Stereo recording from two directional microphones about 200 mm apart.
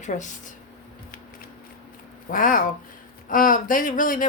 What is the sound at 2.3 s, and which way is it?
A woman's voice, 45° left (ahead or behind).